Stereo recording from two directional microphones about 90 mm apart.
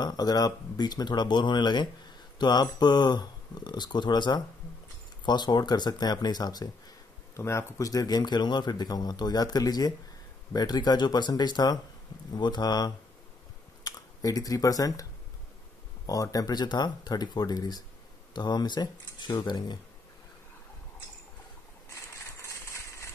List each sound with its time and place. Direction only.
0.0 s a man's voice: 45° left (ahead or behind)
7.3 s a man's voice: 30° left (ahead or behind)
16.1 s a man's voice: 40° left (ahead or behind)
22.1 s coin: 35° left (ahead or behind)